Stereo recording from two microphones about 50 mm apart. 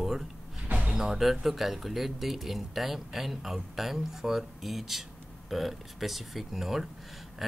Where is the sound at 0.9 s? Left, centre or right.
Centre.